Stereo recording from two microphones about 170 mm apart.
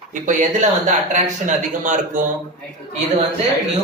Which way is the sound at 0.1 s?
50° right (ahead or behind).